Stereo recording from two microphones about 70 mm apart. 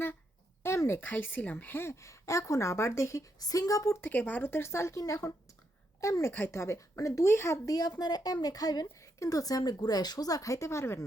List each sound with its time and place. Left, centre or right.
0.6 s a sound: left
1.0 s speech: left
1.9 s speech: left
3.4 s speech: left
4.0 s a woman's voice: left
7.7 s a woman's voice: left
9.1 s speech: left